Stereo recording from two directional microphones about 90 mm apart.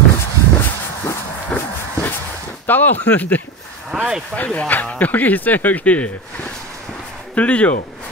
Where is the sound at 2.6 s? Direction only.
20° left (ahead or behind).